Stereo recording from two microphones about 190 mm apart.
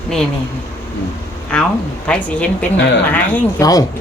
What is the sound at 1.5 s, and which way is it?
A woman's voice, 5° left (ahead or behind).